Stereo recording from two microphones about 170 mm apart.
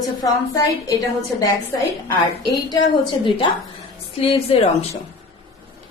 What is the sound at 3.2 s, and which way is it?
A woman's voice, 30° left (ahead or behind).